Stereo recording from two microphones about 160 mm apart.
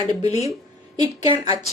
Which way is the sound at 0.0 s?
25° right (ahead or behind).